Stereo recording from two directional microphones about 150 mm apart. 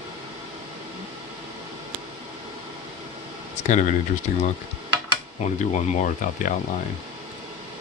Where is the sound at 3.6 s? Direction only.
55° left (ahead or behind).